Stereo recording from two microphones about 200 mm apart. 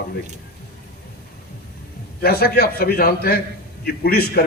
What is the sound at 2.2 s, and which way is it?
A man's voice, 50° left (ahead or behind).